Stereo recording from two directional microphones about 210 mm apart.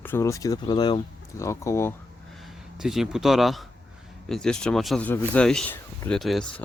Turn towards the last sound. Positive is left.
turn(degrees=0)  # may be behind; listen again after turning